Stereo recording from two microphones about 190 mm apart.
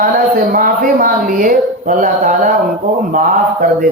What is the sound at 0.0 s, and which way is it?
A man's voice, 45° right (ahead or behind).